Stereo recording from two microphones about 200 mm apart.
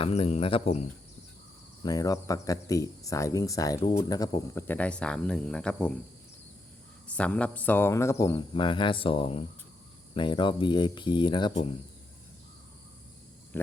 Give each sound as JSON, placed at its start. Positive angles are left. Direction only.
{"t": 0.0, "sound": "speech", "side_deg": 30}
{"t": 1.8, "sound": "speech", "side_deg": 20}
{"t": 7.1, "sound": "speech", "side_deg": 5}